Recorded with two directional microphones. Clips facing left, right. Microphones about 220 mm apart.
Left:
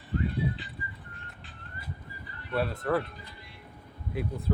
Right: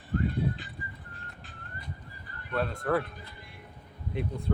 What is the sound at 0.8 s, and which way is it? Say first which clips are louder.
Music: even; 45° right (ahead or behind).